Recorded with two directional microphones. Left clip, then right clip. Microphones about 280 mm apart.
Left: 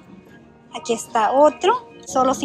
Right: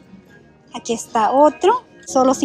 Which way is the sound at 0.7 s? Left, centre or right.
Centre.